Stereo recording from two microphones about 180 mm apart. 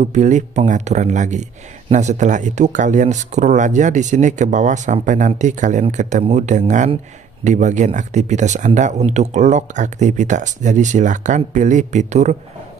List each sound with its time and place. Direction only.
0.0 s speech: 40° right (ahead or behind)